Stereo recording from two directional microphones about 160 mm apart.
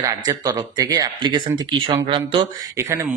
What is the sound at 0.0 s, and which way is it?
Speech, 20° right (ahead or behind).